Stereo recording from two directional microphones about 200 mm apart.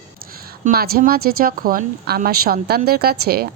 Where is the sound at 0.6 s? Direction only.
45° right (ahead or behind).